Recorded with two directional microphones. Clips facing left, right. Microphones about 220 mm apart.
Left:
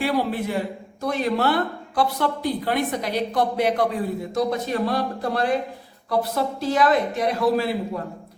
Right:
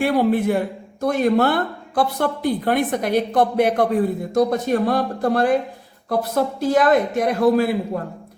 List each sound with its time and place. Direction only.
0.0 s speech: 50° right (ahead or behind)